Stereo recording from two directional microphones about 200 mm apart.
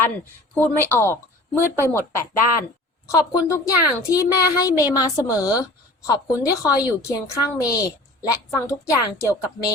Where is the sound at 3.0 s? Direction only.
15° left (ahead or behind).